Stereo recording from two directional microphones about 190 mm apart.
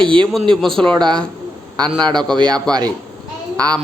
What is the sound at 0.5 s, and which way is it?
Speech, centre (ahead or behind).